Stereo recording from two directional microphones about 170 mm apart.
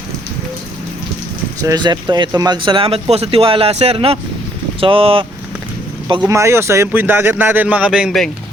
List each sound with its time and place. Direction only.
1.6 s speech: 25° right (ahead or behind)
6.1 s speech: 20° right (ahead or behind); by 8.3 s centre (ahead or behind)